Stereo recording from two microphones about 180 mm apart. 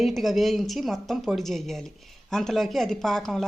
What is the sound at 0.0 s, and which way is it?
Speech, centre (ahead or behind).